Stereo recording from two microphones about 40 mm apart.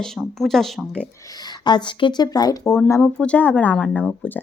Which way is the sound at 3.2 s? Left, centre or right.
Left.